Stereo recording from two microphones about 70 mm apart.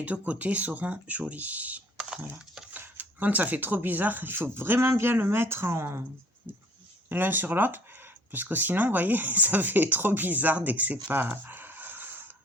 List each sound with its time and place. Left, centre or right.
0.0 s speech: centre; by 6.0 s right
7.1 s speech: right
11.1 s a sound: right